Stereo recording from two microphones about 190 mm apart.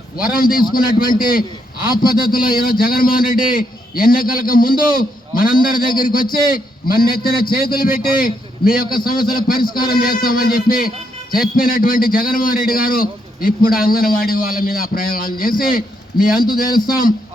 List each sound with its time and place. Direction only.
0.2 s a man's voice: 50° left (ahead or behind)